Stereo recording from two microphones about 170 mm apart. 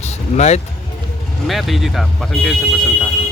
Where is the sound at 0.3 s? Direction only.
40° left (ahead or behind).